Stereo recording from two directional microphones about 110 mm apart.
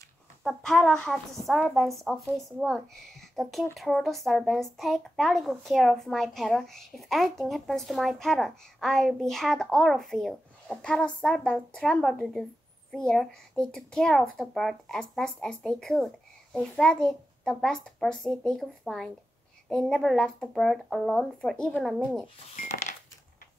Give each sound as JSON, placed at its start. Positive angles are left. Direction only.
{"t": 0.4, "sound": "speech", "side_deg": 5}